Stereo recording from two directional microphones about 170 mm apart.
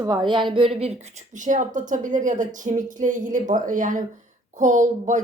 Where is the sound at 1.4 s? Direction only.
50° right (ahead or behind).